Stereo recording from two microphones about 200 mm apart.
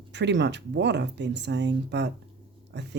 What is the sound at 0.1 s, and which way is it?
Speech, 60° right (ahead or behind).